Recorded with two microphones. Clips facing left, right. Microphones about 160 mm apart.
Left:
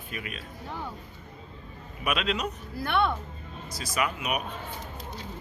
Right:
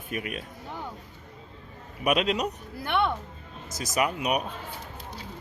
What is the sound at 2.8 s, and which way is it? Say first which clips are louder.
Speech: even; 15° right (ahead or behind).